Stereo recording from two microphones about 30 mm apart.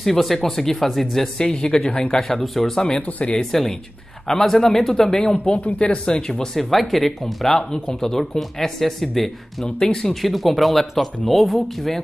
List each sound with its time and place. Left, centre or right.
0.0 s speech: centre
1.4 s speech: left
2.4 s speech: centre
2.7 s speech: left
3.0 s speech: left
3.3 s speech: centre
5.6 s speech: left
6.7 s speech: centre
7.5 s speech: centre
9.8 s speech: centre
10.2 s speech: centre